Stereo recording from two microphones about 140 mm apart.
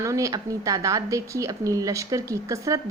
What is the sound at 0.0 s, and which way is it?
A woman's voice, 20° right (ahead or behind).